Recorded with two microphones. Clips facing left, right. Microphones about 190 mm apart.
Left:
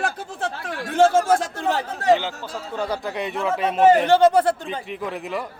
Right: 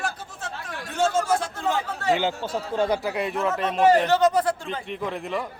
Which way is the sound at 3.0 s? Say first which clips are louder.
Even; 5° right (ahead or behind).